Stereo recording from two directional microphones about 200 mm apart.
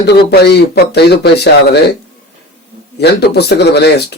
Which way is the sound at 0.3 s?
55° left (ahead or behind).